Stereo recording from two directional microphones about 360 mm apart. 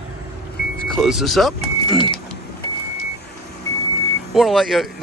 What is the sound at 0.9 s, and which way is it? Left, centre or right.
Speech, centre.